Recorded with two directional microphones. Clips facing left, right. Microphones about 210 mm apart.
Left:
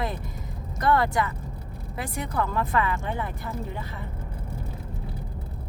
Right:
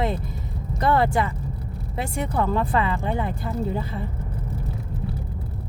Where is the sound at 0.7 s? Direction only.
25° right (ahead or behind).